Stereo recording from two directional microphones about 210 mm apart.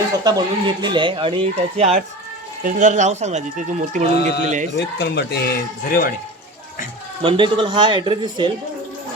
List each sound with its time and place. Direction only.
0.3 s speech: 20° right (ahead or behind); by 4.7 s 35° right (ahead or behind)
4.9 s speech: 50° left (ahead or behind)
7.2 s speech: 25° right (ahead or behind)